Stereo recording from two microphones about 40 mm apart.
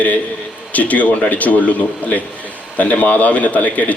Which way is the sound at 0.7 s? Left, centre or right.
Left.